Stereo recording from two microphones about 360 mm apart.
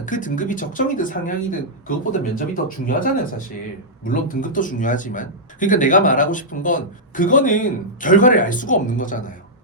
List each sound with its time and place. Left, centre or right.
0.0 s speech: left